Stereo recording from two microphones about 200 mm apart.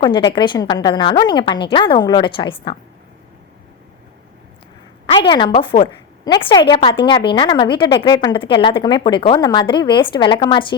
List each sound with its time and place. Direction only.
0.0 s a woman's voice: 25° left (ahead or behind)
5.0 s a woman's voice: 25° left (ahead or behind)